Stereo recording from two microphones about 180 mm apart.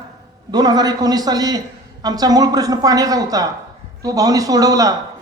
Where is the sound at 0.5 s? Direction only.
20° right (ahead or behind).